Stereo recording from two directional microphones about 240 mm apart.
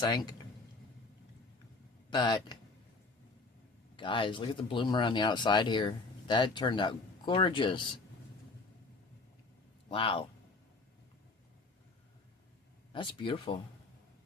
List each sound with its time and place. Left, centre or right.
0.0 s a man's voice: centre
2.1 s speech: centre
3.9 s speech: left
9.9 s speech: left
12.9 s speech: left